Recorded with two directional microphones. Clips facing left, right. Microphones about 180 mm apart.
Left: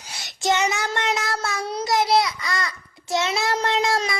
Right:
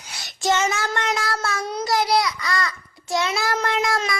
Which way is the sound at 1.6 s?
25° left (ahead or behind).